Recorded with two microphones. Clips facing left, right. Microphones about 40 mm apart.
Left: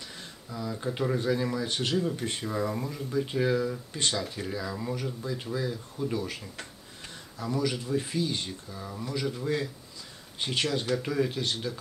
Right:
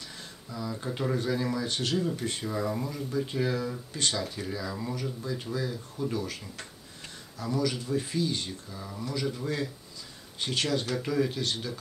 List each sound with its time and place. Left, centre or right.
0.5 s speech: centre
1.7 s speech: left
2.0 s speech: centre
7.5 s speech: centre
8.5 s speech: centre